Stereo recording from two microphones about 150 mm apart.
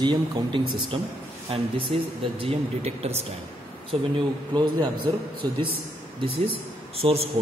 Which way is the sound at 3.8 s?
35° right (ahead or behind).